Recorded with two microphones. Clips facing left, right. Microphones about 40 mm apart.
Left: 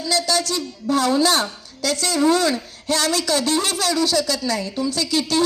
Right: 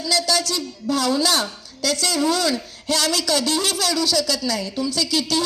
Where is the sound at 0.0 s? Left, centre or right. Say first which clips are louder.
Even; left.